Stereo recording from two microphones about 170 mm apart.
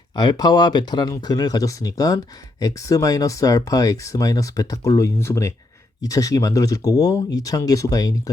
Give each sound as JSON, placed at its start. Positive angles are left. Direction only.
{"t": 0.2, "sound": "speech", "side_deg": 25}